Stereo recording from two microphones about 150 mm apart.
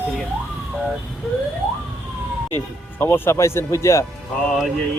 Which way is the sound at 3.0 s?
15° left (ahead or behind).